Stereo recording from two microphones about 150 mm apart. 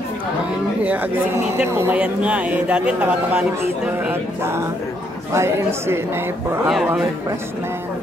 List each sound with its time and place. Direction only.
0.8 s speech: 15° right (ahead or behind)